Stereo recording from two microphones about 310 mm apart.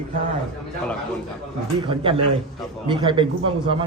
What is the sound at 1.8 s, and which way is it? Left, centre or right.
A man's voice, centre.